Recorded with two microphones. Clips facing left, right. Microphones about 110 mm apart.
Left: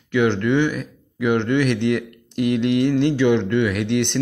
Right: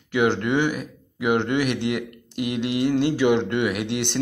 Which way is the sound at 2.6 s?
10° right (ahead or behind).